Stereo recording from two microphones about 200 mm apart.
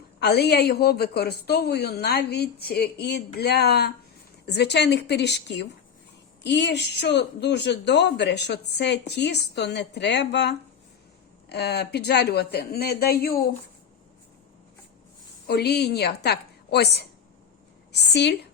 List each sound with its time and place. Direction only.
0.2 s a woman's voice: 55° left (ahead or behind)
15.4 s speech: 55° left (ahead or behind)